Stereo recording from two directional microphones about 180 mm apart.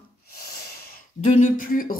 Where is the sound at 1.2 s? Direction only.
45° left (ahead or behind).